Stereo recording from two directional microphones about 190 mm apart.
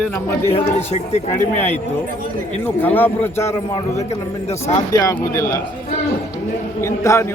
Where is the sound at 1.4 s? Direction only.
10° left (ahead or behind).